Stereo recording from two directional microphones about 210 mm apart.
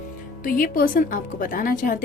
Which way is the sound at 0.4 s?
40° left (ahead or behind).